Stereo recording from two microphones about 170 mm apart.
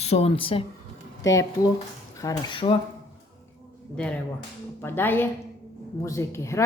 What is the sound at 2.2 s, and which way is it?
Speech, 30° left (ahead or behind).